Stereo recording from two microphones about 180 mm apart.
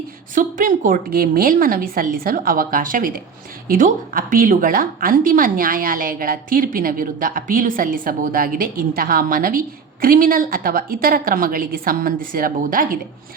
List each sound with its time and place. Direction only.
0.3 s a woman's voice: 45° right (ahead or behind)